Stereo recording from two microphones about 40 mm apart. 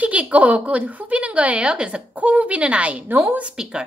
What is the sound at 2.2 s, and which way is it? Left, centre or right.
Speech, right.